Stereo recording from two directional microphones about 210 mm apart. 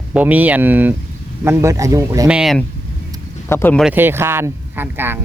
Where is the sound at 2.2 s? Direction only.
5° right (ahead or behind).